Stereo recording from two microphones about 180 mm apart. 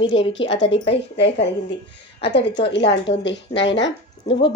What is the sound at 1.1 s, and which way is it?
Speech, 70° left (ahead or behind).